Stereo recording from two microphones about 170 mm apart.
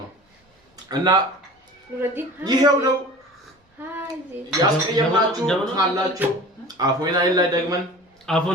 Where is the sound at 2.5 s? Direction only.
25° right (ahead or behind).